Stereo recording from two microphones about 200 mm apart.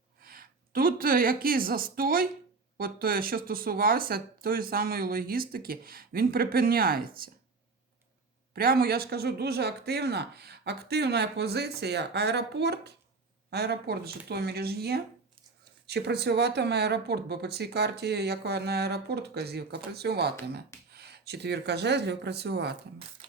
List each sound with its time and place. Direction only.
0.2 s a woman's voice: 50° right (ahead or behind)
8.5 s speech: 50° right (ahead or behind)